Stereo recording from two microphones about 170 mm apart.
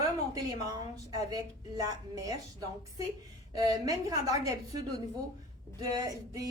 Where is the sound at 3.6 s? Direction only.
20° right (ahead or behind).